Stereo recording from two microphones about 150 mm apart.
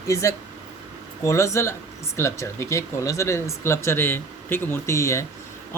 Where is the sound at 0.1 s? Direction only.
20° left (ahead or behind).